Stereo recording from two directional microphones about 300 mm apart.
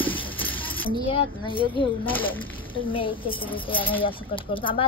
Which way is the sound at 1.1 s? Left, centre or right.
Centre.